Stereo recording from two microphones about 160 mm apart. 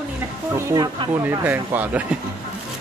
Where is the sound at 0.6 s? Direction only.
20° right (ahead or behind).